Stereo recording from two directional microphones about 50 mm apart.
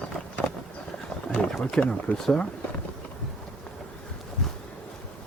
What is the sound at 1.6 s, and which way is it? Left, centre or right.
Speech, centre.